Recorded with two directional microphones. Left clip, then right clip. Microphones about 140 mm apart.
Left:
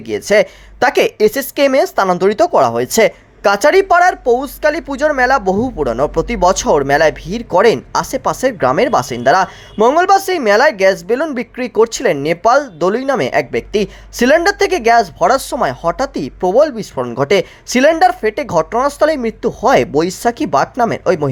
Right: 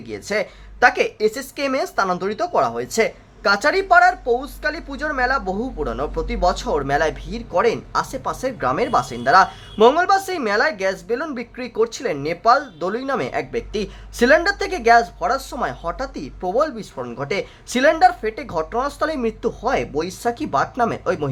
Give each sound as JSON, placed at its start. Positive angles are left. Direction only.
{"t": 0.1, "sound": "speech", "side_deg": 40}
{"t": 1.3, "sound": "speech", "side_deg": 45}
{"t": 15.2, "sound": "speech", "side_deg": 50}
{"t": 17.2, "sound": "speech", "side_deg": 50}
{"t": 17.7, "sound": "speech", "side_deg": 35}
{"t": 19.6, "sound": "speech", "side_deg": 50}